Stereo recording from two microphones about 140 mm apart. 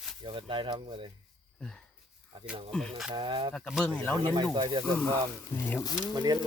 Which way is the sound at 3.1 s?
35° right (ahead or behind).